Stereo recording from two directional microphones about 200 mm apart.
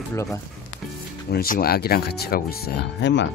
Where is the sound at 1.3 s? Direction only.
50° left (ahead or behind).